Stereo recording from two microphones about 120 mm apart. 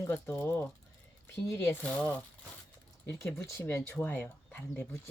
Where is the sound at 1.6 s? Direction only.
10° left (ahead or behind).